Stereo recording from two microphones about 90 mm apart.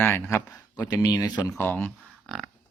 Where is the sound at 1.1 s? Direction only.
50° left (ahead or behind).